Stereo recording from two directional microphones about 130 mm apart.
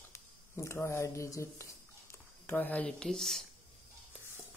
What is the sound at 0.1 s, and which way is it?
Speech, 20° left (ahead or behind).